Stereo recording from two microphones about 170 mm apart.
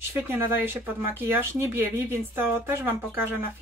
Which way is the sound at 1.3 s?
15° right (ahead or behind).